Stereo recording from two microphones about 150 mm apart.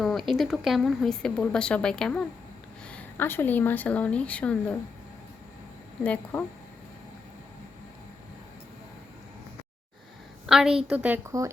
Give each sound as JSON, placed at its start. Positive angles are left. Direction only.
{"t": 0.0, "sound": "a woman's voice", "side_deg": 0}
{"t": 6.0, "sound": "a woman's voice", "side_deg": 10}
{"t": 10.4, "sound": "a woman's voice", "side_deg": -5}
{"t": 11.3, "sound": "speech", "side_deg": -20}